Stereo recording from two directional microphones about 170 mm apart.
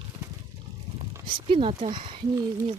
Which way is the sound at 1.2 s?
30° right (ahead or behind).